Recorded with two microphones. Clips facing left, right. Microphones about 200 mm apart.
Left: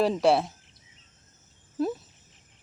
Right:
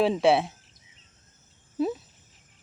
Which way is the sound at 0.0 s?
Centre (ahead or behind).